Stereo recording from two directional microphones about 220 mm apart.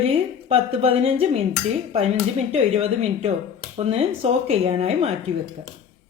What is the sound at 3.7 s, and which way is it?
A woman's voice, 30° right (ahead or behind).